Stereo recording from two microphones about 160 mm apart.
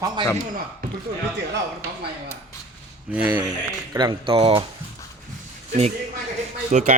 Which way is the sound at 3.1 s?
10° right (ahead or behind).